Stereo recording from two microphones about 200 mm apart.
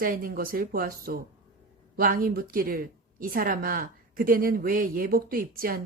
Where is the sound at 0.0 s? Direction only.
45° right (ahead or behind).